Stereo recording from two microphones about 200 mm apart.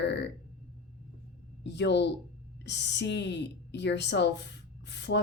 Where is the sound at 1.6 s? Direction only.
60° left (ahead or behind).